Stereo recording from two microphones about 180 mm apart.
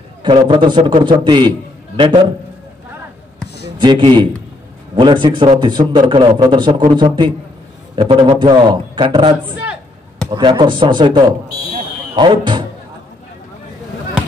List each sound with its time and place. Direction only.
0.2 s a man's voice: 30° right (ahead or behind)
3.7 s a man's voice: 25° right (ahead or behind)